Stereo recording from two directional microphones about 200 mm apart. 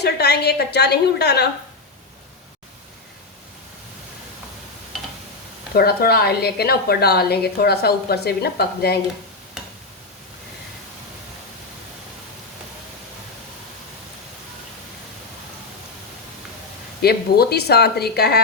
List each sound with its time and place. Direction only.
0.0 s a woman's voice: 55° left (ahead or behind)
5.7 s a woman's voice: 50° left (ahead or behind)
17.0 s a woman's voice: 50° left (ahead or behind)